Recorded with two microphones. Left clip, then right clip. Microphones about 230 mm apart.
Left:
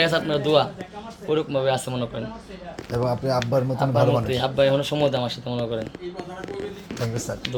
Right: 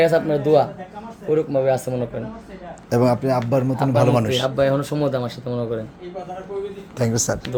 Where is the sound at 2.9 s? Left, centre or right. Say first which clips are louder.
Right 7 dB; right.